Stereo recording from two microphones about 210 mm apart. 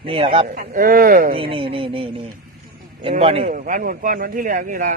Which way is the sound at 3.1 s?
30° right (ahead or behind).